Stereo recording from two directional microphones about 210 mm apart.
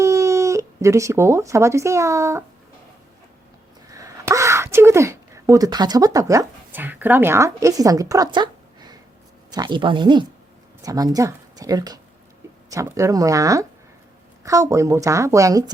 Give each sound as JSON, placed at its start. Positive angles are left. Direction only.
{"t": 0.0, "sound": "speech", "side_deg": -15}
{"t": 3.9, "sound": "speech", "side_deg": -15}